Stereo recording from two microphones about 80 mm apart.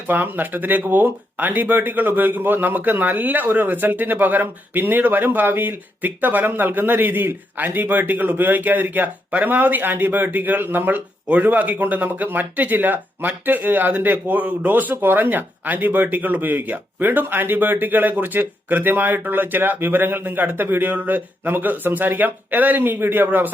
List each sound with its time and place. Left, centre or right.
0.1 s speech: right